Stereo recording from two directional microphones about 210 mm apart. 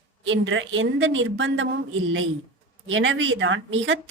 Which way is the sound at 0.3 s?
65° right (ahead or behind).